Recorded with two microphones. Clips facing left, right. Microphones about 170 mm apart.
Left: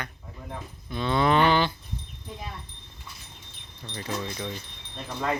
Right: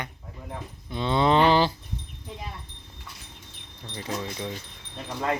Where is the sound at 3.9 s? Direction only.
20° right (ahead or behind).